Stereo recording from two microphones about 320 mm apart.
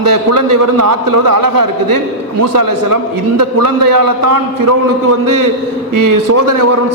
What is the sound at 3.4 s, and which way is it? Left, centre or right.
Speech, right.